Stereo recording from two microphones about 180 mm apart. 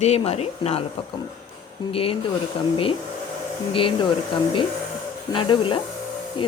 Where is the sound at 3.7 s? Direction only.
30° left (ahead or behind).